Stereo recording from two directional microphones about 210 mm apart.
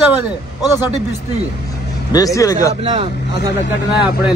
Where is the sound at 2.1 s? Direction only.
15° left (ahead or behind).